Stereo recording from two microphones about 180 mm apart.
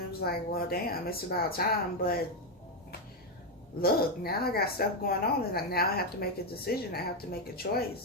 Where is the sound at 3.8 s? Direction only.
60° left (ahead or behind).